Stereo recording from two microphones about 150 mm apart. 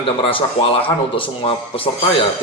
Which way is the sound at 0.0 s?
35° left (ahead or behind).